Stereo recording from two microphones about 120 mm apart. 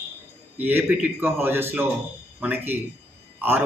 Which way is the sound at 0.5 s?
15° right (ahead or behind).